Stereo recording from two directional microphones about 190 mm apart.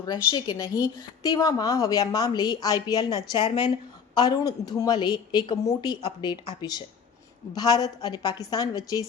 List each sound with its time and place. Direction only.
0.0 s a woman's voice: 20° left (ahead or behind)